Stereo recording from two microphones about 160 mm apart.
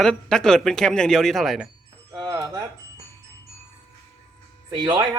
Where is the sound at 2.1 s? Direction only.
25° right (ahead or behind).